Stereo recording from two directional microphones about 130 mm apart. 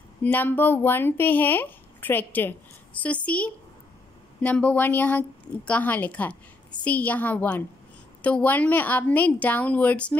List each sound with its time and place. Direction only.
0.2 s speech: 15° left (ahead or behind)